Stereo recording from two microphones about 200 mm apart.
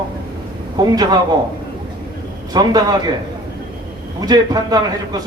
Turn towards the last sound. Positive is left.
turn(degrees=-20)  # may be behind; listen again after turning